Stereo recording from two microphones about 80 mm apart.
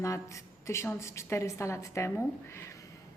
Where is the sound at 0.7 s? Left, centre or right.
Left.